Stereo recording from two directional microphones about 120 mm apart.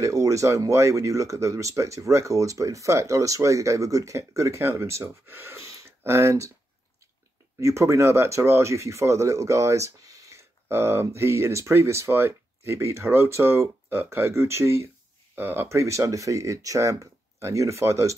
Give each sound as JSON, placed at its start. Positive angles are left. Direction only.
{"t": 0.0, "sound": "speech", "side_deg": -25}
{"t": 7.6, "sound": "speech", "side_deg": -25}